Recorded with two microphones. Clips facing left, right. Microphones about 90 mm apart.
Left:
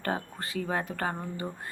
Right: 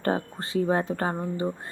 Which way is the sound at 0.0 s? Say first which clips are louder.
Right 5 dB; 30° right (ahead or behind).